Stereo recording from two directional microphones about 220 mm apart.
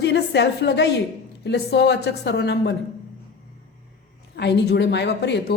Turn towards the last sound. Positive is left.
turn(degrees=50)  # may be behind; listen again after turning